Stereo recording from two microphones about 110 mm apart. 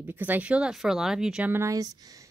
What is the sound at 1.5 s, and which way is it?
Speech, 30° right (ahead or behind).